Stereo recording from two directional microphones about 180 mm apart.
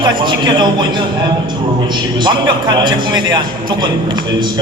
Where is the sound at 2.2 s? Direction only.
25° right (ahead or behind).